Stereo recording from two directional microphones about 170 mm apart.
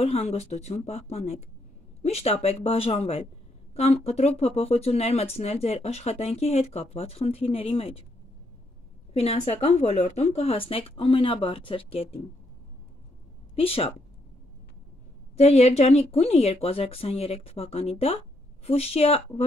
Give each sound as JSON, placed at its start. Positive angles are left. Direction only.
{"t": 0.0, "sound": "speech", "side_deg": 35}
{"t": 9.1, "sound": "speech", "side_deg": 35}
{"t": 13.6, "sound": "speech", "side_deg": 35}
{"t": 15.3, "sound": "speech", "side_deg": 40}